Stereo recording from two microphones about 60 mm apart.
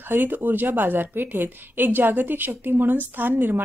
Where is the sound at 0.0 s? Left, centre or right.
Right.